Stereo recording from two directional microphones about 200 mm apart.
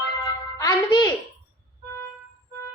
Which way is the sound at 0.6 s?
20° left (ahead or behind).